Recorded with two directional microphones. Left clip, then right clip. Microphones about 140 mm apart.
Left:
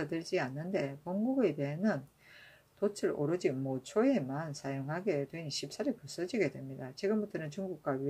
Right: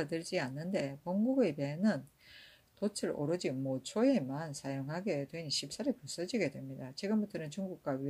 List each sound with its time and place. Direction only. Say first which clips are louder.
0.0 s speech: left 1 dB; 20° right (ahead or behind)